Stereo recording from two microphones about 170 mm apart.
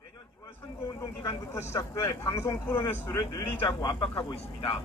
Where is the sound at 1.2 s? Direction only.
15° left (ahead or behind).